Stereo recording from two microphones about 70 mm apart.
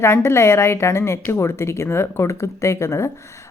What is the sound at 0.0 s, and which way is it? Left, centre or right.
A woman's voice, left.